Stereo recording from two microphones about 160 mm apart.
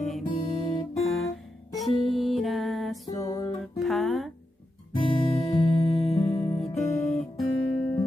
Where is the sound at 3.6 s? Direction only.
Centre (ahead or behind).